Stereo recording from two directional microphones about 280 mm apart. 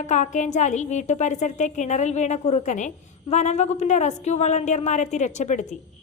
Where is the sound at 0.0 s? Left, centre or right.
Left.